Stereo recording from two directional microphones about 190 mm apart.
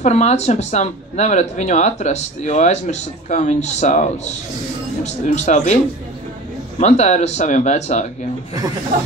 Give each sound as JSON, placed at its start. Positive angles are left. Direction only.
{"t": 0.0, "sound": "speech", "side_deg": 35}
{"t": 6.8, "sound": "speech", "side_deg": 35}